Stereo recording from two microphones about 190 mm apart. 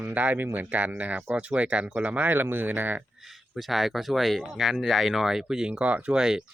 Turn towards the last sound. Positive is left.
turn(degrees=-5)  # may be behind; listen again after turning